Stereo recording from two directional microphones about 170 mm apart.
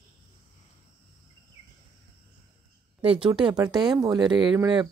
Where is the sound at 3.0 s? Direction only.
35° right (ahead or behind).